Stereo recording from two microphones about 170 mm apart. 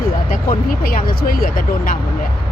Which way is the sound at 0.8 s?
60° left (ahead or behind).